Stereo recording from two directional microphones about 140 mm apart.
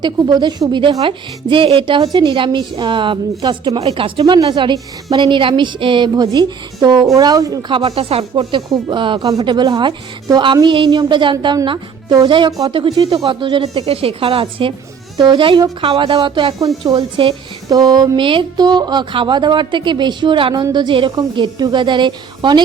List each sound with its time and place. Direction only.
0.0 s speech: 30° right (ahead or behind)
3.8 s a woman's voice: 40° right (ahead or behind); by 7.8 s 25° right (ahead or behind)
7.8 s speech: 45° right (ahead or behind)
8.4 s speech: 35° right (ahead or behind)
12.7 s a woman's voice: 35° right (ahead or behind)
17.0 s speech: 40° right (ahead or behind)
17.7 s speech: 25° right (ahead or behind)